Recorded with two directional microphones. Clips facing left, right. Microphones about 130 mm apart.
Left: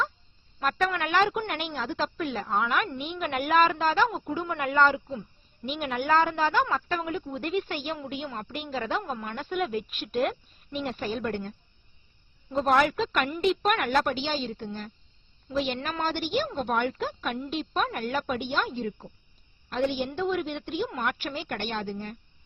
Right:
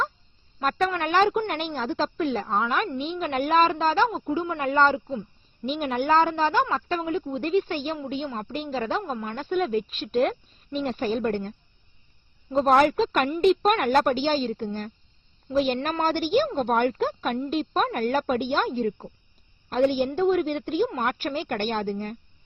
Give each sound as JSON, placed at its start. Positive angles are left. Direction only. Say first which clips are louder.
{"t": 0.6, "sound": "a woman's voice", "louder": "right 3 dB", "side_deg": -35}
{"t": 5.7, "sound": "a woman's voice", "louder": "right 3 dB", "side_deg": -35}